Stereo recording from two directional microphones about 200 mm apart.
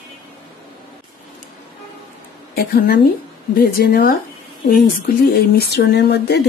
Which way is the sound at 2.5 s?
50° left (ahead or behind).